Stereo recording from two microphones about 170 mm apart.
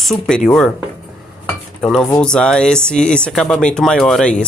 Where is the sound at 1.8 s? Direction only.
5° left (ahead or behind).